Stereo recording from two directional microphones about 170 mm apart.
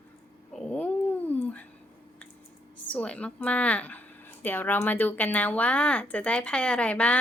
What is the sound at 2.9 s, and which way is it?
Speech, 5° left (ahead or behind).